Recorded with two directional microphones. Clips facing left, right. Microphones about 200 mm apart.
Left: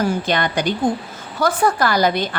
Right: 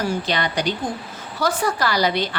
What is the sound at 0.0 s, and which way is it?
A woman's voice, 50° left (ahead or behind).